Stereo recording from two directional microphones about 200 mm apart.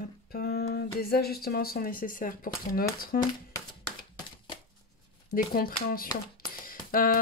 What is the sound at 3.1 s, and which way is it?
Speech, 50° left (ahead or behind).